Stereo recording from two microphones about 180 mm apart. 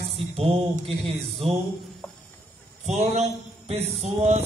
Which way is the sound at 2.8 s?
35° right (ahead or behind).